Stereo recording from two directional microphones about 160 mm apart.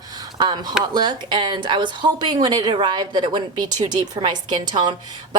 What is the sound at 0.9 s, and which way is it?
Speech, 30° right (ahead or behind).